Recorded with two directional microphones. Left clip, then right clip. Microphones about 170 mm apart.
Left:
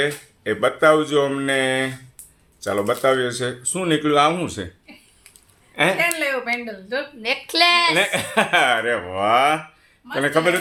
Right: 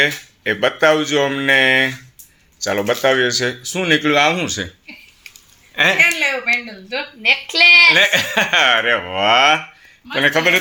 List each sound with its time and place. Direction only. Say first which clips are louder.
0.0 s speech: right 6 dB; 5° right (ahead or behind)
5.7 s speech: right 4 dB; 5° right (ahead or behind)
6.1 s speech: right 5 dB; 35° left (ahead or behind)
7.9 s a man's voice: right 5 dB; centre (ahead or behind)